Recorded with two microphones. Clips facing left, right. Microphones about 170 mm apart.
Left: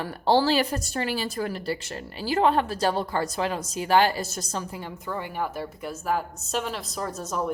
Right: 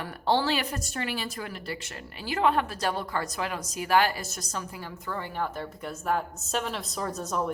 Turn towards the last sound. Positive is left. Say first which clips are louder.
# left 1 dB
turn(degrees=0)  # may be behind; listen again after turning